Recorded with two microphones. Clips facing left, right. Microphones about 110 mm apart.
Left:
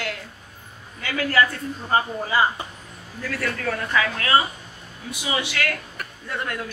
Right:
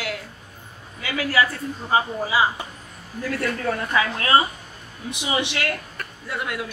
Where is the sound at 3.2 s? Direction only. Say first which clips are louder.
Right 3 dB; 25° right (ahead or behind).